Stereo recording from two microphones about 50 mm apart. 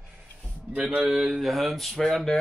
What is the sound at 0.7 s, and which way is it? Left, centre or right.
Speech, right.